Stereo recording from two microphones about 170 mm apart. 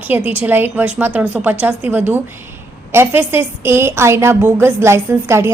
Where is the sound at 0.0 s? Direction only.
10° right (ahead or behind).